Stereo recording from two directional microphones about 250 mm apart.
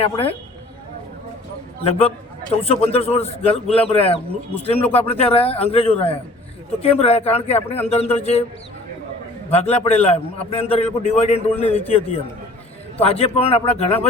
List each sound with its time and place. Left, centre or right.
0.0 s a man's voice: left
1.8 s a man's voice: left
9.5 s a man's voice: left